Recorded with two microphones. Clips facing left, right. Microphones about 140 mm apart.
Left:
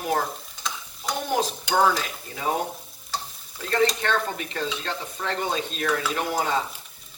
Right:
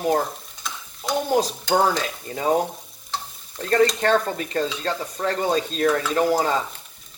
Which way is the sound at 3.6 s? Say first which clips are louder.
Right 4 dB; 40° right (ahead or behind).